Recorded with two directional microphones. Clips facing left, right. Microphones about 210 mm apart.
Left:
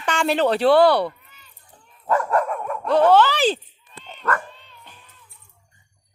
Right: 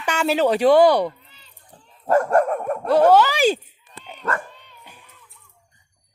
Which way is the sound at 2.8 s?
10° right (ahead or behind).